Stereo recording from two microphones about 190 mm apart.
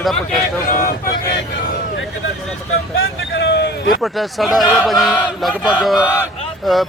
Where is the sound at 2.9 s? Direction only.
80° left; by 4.0 s 65° left (ahead or behind).